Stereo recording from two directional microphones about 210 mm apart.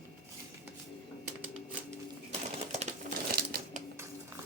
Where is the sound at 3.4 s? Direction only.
45° right (ahead or behind).